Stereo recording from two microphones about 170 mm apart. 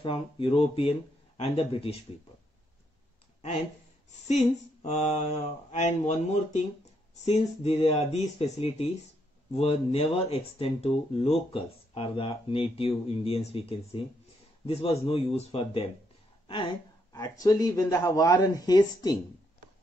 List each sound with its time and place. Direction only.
0.0 s speech: 30° left (ahead or behind)
4.8 s mantra: 45° left (ahead or behind)
5.7 s speech: 40° left (ahead or behind)
17.1 s speech: 20° left (ahead or behind)